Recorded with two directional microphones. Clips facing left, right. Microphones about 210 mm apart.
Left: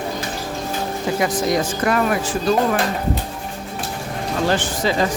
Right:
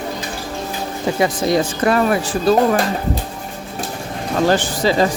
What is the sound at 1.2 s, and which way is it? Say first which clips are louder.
Speech: right 3 dB; 30° right (ahead or behind).